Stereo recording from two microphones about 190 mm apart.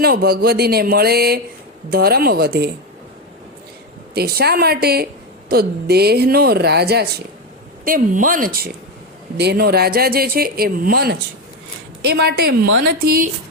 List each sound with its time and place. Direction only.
0.0 s speech: 55° right (ahead or behind)
4.1 s speech: 55° right (ahead or behind)
7.9 s speech: 45° right (ahead or behind)